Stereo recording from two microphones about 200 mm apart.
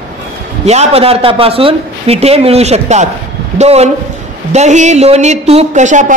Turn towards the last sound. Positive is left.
turn(degrees=-40)  # may be behind; listen again after turning